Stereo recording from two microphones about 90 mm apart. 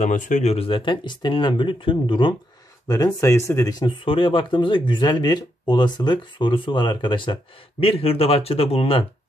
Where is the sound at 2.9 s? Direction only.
40° left (ahead or behind).